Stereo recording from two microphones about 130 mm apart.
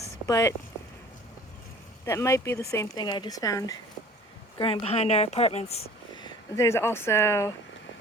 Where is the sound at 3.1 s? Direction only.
35° left (ahead or behind).